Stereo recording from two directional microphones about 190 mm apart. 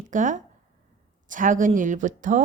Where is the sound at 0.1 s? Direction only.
40° right (ahead or behind).